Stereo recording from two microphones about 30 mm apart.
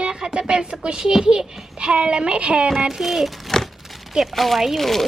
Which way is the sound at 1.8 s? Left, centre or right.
Right.